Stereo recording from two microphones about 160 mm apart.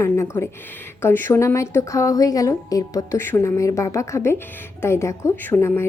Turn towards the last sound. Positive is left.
turn(degrees=15)  # may be behind; listen again after turning